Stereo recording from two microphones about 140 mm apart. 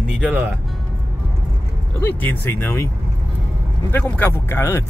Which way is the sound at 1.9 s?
15° left (ahead or behind).